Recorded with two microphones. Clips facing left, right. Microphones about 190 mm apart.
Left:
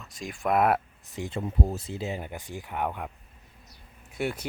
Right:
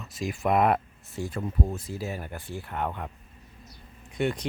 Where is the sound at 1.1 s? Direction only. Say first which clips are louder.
Even; 20° left (ahead or behind).